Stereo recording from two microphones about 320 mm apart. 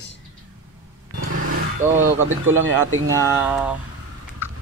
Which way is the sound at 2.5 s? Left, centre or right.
Right.